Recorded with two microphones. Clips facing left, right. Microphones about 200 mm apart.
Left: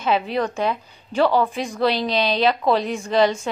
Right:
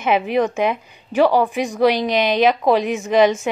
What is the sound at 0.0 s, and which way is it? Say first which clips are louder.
A woman's voice: right 4 dB; 15° right (ahead or behind).